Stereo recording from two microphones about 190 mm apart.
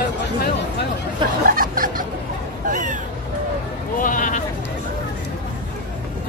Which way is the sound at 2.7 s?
45° right (ahead or behind).